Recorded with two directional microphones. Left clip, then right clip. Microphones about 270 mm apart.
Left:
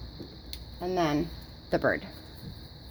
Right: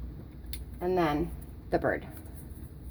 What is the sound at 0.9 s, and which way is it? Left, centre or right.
A woman's voice, left.